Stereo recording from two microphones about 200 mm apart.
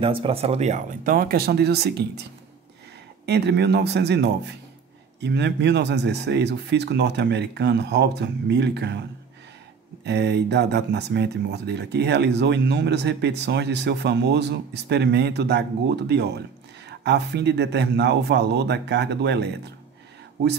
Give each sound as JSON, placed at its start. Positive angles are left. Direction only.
{"t": 0.0, "sound": "speech", "side_deg": -25}
{"t": 3.3, "sound": "speech", "side_deg": -55}
{"t": 10.0, "sound": "speech", "side_deg": -55}